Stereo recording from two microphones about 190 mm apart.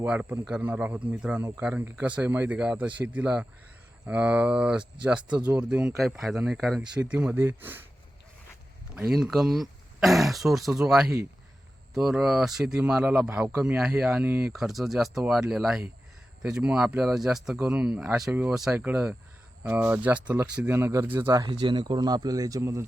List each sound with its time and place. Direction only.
0.0 s a man's voice: 10° right (ahead or behind)
9.0 s a man's voice: centre (ahead or behind)